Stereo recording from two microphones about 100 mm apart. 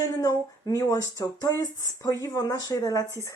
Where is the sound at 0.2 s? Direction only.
35° left (ahead or behind).